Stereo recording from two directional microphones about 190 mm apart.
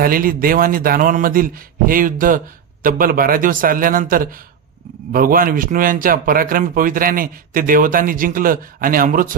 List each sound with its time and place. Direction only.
0.0 s speech: 50° right (ahead or behind)